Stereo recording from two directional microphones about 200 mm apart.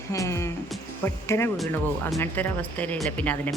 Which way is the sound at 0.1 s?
15° left (ahead or behind).